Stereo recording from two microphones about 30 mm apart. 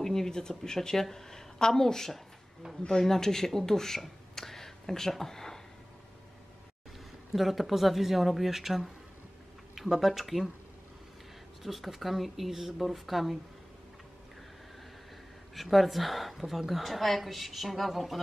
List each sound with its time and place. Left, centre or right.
0.0 s speech: centre
7.3 s a woman's voice: centre
11.6 s a woman's voice: centre
15.5 s a woman's voice: centre